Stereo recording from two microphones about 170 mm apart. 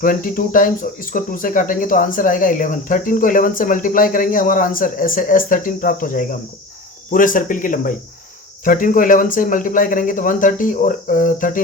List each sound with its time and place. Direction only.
0.0 s speech: 55° left (ahead or behind)